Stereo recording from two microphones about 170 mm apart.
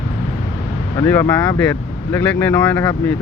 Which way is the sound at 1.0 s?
20° left (ahead or behind).